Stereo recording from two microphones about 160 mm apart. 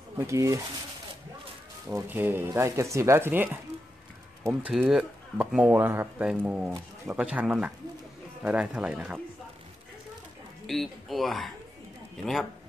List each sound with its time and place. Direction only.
0.2 s speech: 20° right (ahead or behind)
1.9 s speech: 15° right (ahead or behind)
4.5 s speech: 5° right (ahead or behind)
10.7 s speech: centre (ahead or behind)